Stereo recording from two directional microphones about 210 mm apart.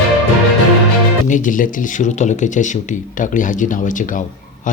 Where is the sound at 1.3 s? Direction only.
40° left (ahead or behind).